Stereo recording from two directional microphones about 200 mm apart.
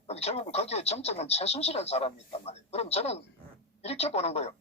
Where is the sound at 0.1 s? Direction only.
30° left (ahead or behind).